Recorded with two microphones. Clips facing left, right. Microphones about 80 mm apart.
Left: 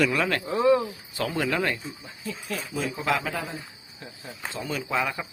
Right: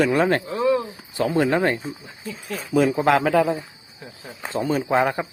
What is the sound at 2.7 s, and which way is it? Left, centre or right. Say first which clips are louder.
Speech: right 10 dB; right.